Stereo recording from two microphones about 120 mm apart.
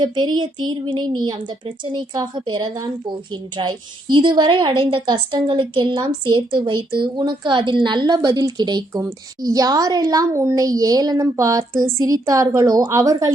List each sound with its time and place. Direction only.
0.0 s a woman's voice: 40° right (ahead or behind)